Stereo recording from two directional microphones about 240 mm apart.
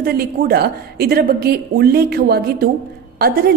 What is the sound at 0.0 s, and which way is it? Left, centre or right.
A woman's voice, right.